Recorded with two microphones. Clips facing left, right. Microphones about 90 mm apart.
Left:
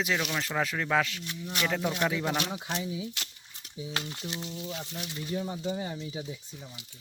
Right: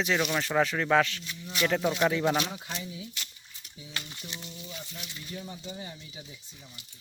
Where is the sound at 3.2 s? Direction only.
75° left (ahead or behind).